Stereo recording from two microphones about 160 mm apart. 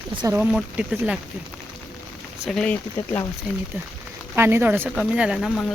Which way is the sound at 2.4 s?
Centre (ahead or behind).